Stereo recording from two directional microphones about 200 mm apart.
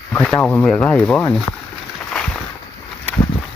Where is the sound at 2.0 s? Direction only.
5° left (ahead or behind).